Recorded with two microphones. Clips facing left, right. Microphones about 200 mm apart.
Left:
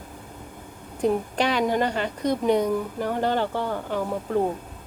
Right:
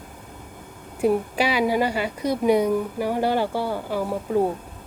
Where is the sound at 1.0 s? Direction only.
10° right (ahead or behind).